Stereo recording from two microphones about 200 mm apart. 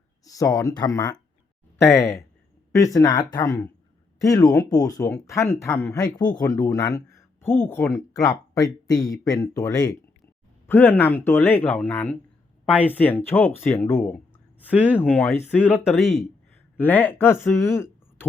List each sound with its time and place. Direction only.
0.3 s speech: 15° left (ahead or behind)
15.6 s speech: 5° right (ahead or behind); by 17.8 s 15° left (ahead or behind)